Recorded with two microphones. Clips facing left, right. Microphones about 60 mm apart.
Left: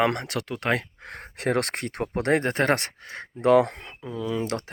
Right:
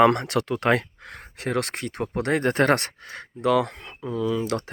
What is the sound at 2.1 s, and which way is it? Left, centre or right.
Speech, left.